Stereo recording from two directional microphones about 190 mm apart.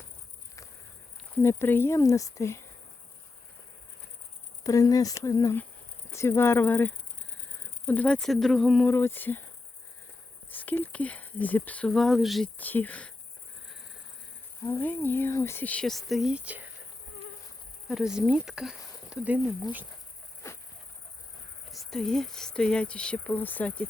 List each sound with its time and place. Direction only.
1.4 s speech: 15° left (ahead or behind)
4.6 s speech: 15° left (ahead or behind)
10.5 s speech: 10° left (ahead or behind)
14.6 s speech: 10° left (ahead or behind); by 16.7 s 10° right (ahead or behind)
17.8 s speech: 5° right (ahead or behind)
21.7 s speech: centre (ahead or behind)